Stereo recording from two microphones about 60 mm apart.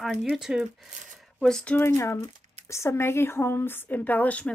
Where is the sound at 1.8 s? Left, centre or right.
Left.